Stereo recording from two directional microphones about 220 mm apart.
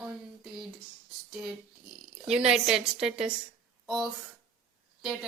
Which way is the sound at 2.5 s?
Centre (ahead or behind).